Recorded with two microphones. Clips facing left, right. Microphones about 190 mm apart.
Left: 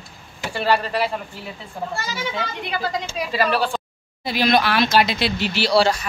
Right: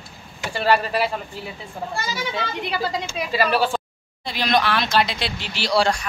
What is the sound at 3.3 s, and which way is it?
Speech, 5° right (ahead or behind).